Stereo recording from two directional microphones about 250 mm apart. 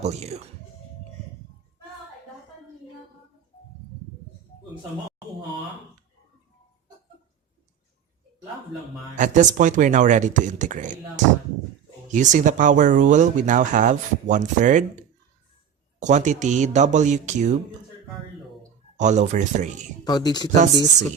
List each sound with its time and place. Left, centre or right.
0.0 s speech: right
9.1 s speech: right
12.1 s speech: right
16.0 s speech: right
18.9 s speech: right
20.1 s speech: centre